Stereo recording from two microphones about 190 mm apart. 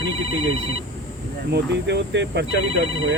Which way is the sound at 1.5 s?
65° right (ahead or behind).